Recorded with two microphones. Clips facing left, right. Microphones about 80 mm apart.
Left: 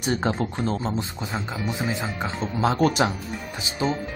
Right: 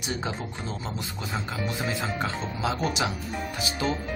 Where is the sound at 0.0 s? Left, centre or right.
Left.